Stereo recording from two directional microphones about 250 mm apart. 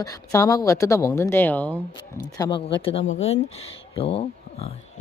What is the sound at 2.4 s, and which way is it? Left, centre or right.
Speech, centre.